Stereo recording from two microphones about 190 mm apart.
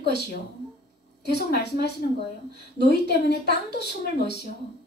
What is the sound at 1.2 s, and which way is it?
Speech, 60° left (ahead or behind).